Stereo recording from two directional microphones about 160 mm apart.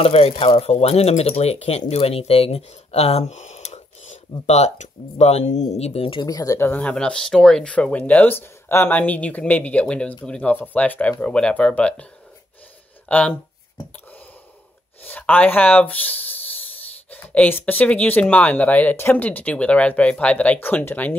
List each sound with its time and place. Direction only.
0.0 s speech: 40° left (ahead or behind)
6.2 s speech: 20° left (ahead or behind)
15.0 s speech: 10° left (ahead or behind)